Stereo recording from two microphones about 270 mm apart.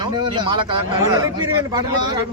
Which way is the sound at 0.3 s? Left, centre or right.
Centre.